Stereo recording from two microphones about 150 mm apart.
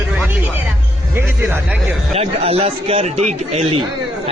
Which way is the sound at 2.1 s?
40° right (ahead or behind).